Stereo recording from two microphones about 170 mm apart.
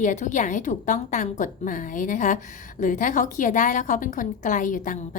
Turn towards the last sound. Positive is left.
turn(degrees=50)  # may be behind; listen again after turning